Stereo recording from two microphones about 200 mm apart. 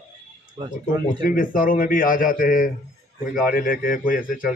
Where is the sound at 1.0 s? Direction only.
45° left (ahead or behind).